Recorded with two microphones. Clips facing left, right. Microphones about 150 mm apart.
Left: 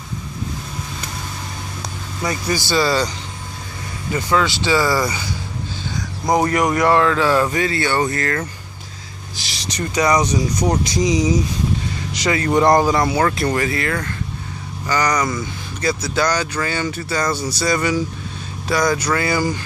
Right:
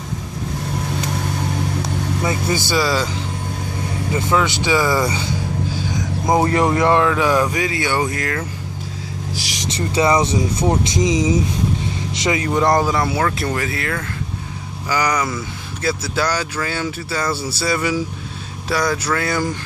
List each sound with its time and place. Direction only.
2.2 s speech: 25° right (ahead or behind)
2.7 s speech: 5° right (ahead or behind)
4.1 s speech: 20° right (ahead or behind)
6.3 s speech: 25° right (ahead or behind); by 8.5 s 10° right (ahead or behind)
9.4 s speech: 20° right (ahead or behind)
12.4 s speech: centre (ahead or behind)